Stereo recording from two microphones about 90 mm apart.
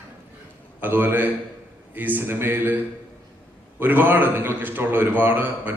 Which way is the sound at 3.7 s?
20° right (ahead or behind).